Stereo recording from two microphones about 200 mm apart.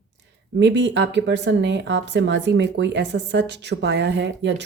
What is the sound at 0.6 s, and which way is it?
A woman's voice, 60° right (ahead or behind).